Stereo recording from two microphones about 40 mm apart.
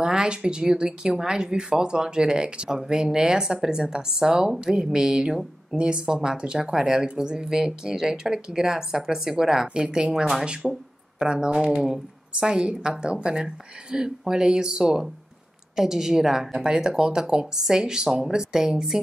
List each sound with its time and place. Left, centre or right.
0.0 s speech: centre